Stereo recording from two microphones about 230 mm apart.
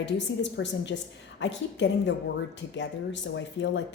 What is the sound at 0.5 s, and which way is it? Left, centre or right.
A woman's voice, left.